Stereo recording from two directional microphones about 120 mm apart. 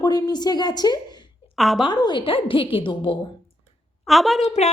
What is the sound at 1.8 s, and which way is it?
A woman's voice, 40° left (ahead or behind).